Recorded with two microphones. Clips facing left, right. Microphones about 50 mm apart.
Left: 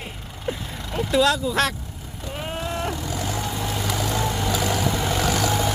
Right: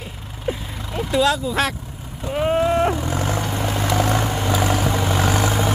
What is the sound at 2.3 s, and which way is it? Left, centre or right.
Vehicle, right.